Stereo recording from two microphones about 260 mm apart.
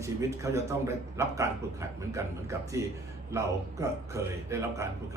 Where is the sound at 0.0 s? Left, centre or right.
Centre.